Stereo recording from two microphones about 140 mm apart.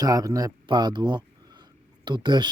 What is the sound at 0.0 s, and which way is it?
Speech, 25° right (ahead or behind).